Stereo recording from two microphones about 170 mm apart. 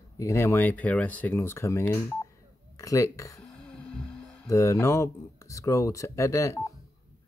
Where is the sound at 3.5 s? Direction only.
5° left (ahead or behind).